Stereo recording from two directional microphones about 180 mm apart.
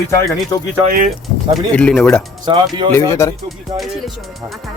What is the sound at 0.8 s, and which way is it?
Speech, 50° right (ahead or behind).